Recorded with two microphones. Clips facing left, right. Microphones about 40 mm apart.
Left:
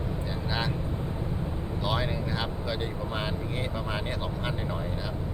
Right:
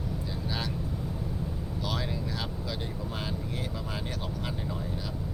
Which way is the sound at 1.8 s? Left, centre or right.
Left.